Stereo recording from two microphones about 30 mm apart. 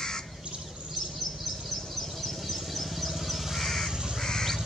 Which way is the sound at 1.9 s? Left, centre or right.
Centre.